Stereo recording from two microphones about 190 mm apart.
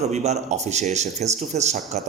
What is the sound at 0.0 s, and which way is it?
A man's voice, 35° right (ahead or behind).